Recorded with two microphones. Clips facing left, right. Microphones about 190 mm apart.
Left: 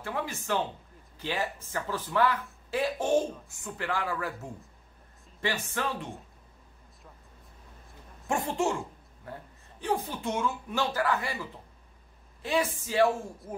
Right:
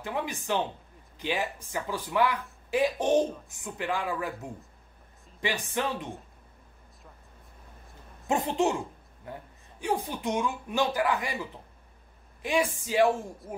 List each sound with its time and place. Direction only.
0.0 s speech: 15° right (ahead or behind)
8.3 s a woman's voice: 20° right (ahead or behind)